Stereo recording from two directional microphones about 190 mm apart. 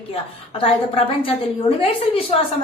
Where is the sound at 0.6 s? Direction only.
30° left (ahead or behind).